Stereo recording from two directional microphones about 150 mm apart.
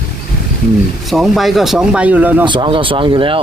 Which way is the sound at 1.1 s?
Centre (ahead or behind).